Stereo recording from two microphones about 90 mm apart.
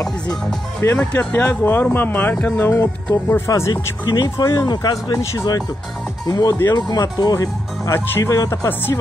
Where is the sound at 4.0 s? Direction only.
50° left (ahead or behind).